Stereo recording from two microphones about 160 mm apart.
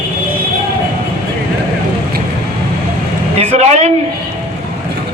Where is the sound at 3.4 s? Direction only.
40° right (ahead or behind).